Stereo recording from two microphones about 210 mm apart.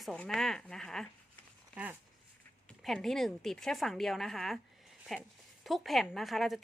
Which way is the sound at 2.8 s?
Centre (ahead or behind).